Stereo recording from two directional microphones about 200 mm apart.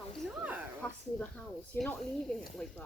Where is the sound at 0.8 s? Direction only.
5° left (ahead or behind).